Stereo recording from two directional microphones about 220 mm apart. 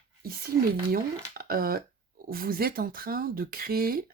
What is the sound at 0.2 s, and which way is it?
Speech, 45° right (ahead or behind).